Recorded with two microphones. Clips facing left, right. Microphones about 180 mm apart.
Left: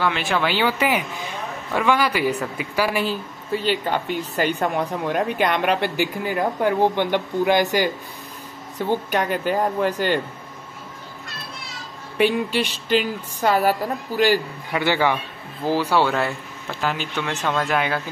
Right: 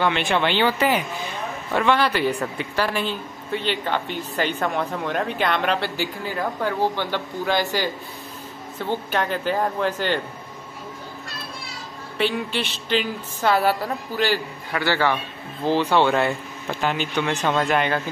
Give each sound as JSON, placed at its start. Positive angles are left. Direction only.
{"t": 0.0, "sound": "speech", "side_deg": 5}
{"t": 3.1, "sound": "speech", "side_deg": 40}
{"t": 3.8, "sound": "speech", "side_deg": 10}
{"t": 12.5, "sound": "speech", "side_deg": 10}